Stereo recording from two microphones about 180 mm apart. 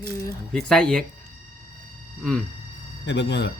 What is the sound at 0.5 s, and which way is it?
Speech, 5° left (ahead or behind).